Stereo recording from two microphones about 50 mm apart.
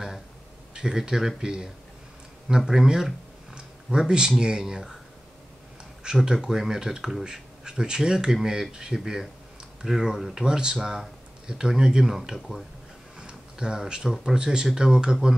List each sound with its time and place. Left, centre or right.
0.7 s speech: centre
3.5 s a sound: centre
4.4 s speech: centre
6.3 s speech: centre
13.2 s a sound: centre
14.1 s speech: centre